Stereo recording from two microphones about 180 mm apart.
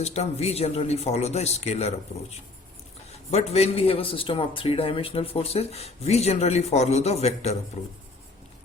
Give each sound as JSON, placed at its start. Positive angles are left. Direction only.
{"t": 0.0, "sound": "a man's voice", "side_deg": 35}
{"t": 3.3, "sound": "a man's voice", "side_deg": 35}